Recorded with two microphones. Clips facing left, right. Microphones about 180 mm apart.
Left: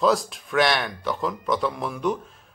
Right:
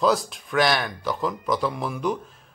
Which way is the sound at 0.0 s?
Centre (ahead or behind).